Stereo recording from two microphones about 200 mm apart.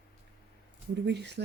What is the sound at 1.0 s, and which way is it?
Speech, 60° right (ahead or behind).